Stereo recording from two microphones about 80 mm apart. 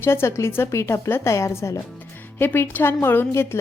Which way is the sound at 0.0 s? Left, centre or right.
Left.